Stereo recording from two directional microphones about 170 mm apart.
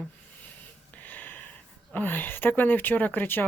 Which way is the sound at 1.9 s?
10° left (ahead or behind).